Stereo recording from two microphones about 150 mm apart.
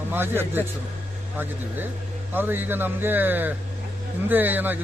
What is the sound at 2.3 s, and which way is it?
Speech, 15° right (ahead or behind).